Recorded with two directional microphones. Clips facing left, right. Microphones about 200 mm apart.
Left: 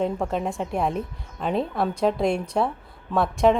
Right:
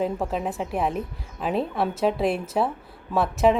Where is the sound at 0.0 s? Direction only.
Centre (ahead or behind).